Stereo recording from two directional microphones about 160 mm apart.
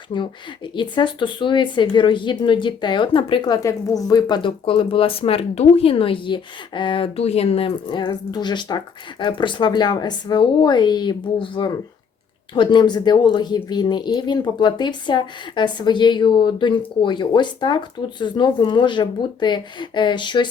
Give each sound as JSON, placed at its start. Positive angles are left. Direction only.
{"t": 0.1, "sound": "speech", "side_deg": 30}